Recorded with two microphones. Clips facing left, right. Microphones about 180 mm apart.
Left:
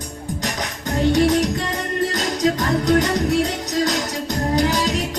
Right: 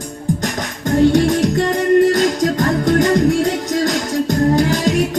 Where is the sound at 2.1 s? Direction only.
50° right (ahead or behind).